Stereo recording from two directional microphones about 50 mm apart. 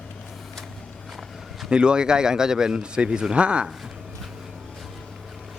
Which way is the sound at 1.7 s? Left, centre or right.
Centre.